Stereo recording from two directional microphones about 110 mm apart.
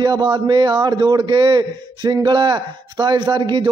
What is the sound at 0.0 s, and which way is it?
Speech, 45° right (ahead or behind).